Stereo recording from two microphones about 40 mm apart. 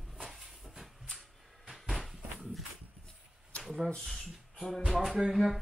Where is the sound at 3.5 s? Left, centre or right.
Left.